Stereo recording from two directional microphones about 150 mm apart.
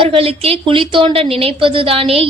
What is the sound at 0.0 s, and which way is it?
A woman's voice, 40° right (ahead or behind).